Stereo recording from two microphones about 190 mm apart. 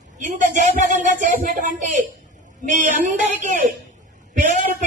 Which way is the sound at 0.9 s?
40° right (ahead or behind).